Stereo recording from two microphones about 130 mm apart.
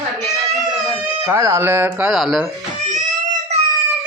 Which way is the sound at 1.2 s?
15° right (ahead or behind).